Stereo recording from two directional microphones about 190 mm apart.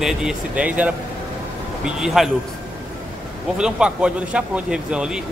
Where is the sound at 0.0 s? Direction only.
5° right (ahead or behind).